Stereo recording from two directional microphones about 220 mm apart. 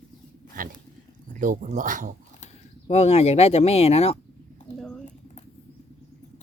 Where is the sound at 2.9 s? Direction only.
30° left (ahead or behind).